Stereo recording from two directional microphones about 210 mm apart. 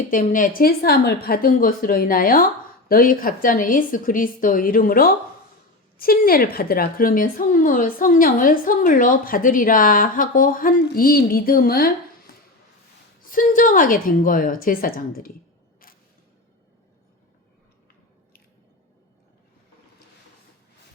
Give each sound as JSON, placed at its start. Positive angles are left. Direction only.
{"t": 0.1, "sound": "a woman's voice", "side_deg": 40}
{"t": 13.3, "sound": "a woman's voice", "side_deg": 40}